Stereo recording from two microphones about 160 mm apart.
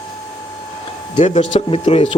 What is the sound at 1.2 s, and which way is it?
Speech, 40° left (ahead or behind).